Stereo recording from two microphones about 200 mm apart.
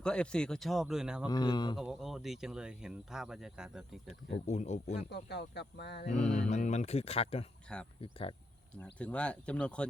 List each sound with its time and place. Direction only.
0.0 s speech: 5° left (ahead or behind)
1.3 s speech: 20° left (ahead or behind)
1.8 s speech: centre (ahead or behind)
4.3 s speech: 35° left (ahead or behind)
4.9 s speech: 55° left (ahead or behind)
6.5 s speech: 35° left (ahead or behind)
7.7 s speech: 5° left (ahead or behind)
8.0 s speech: 25° left (ahead or behind)
8.7 s speech: 5° left (ahead or behind)